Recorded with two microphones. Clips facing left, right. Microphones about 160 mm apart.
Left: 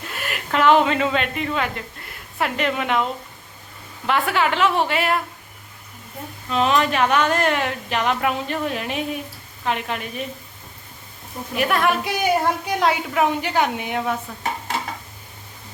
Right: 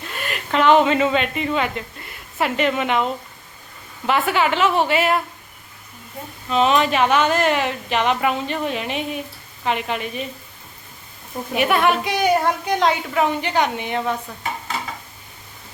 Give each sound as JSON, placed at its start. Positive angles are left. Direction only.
{"t": 0.1, "sound": "a woman's voice", "side_deg": 5}
{"t": 6.5, "sound": "speech", "side_deg": 0}
{"t": 11.5, "sound": "speech", "side_deg": 0}